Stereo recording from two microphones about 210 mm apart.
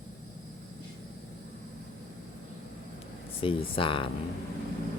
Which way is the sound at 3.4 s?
25° left (ahead or behind).